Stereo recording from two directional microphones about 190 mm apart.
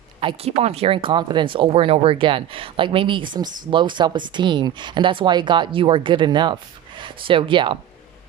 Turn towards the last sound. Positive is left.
turn(degrees=-25)  # may be behind; listen again after turning